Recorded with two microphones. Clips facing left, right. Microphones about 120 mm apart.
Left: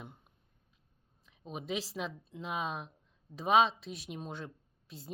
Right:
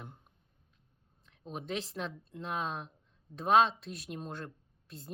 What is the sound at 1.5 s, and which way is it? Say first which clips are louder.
Speech: even; 5° left (ahead or behind).